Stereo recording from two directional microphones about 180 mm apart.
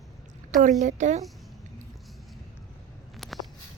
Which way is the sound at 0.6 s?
40° right (ahead or behind).